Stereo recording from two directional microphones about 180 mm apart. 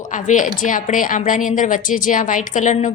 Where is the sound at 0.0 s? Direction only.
45° left (ahead or behind).